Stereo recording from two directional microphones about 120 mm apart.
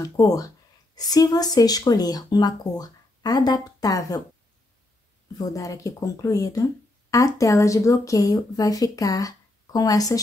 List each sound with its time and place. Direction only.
0.2 s speech: 30° left (ahead or behind)
5.4 s speech: 30° left (ahead or behind)